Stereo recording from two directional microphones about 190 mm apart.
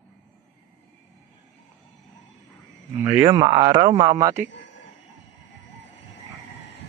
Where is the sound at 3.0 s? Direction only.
15° right (ahead or behind).